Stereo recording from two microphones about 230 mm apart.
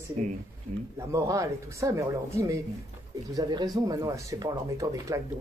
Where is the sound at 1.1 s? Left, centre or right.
Centre.